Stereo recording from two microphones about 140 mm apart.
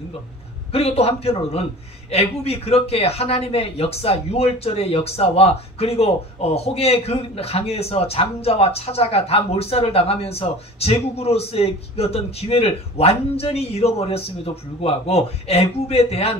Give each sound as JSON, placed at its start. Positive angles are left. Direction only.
{"t": 0.7, "sound": "a man's voice", "side_deg": 45}